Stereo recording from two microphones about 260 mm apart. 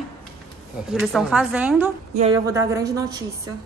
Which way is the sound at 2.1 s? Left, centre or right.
Right.